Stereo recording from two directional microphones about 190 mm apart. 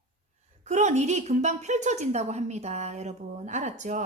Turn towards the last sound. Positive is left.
turn(degrees=-40)  # may be behind; listen again after turning